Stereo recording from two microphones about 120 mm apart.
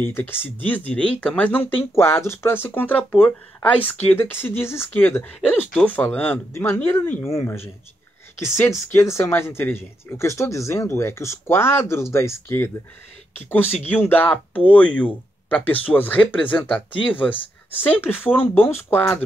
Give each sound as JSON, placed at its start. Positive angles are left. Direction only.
{"t": 0.0, "sound": "speech", "side_deg": 20}
{"t": 13.8, "sound": "speech", "side_deg": 15}
{"t": 17.8, "sound": "speech", "side_deg": 15}